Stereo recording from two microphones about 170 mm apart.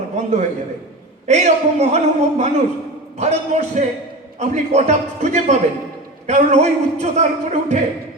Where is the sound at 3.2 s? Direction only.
40° right (ahead or behind).